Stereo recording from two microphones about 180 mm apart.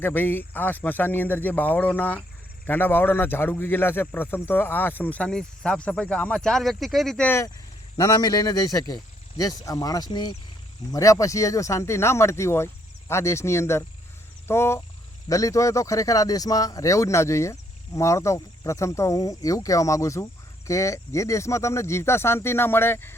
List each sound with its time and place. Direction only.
0.0 s a man's voice: 10° left (ahead or behind)
14.4 s frog: 15° left (ahead or behind)
15.3 s speech: 20° left (ahead or behind)